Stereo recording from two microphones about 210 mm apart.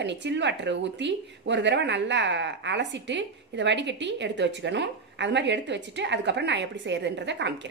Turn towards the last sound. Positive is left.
turn(degrees=-55)  # may be behind; listen again after turning